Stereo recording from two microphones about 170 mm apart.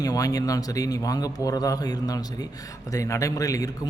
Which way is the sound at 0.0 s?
20° left (ahead or behind).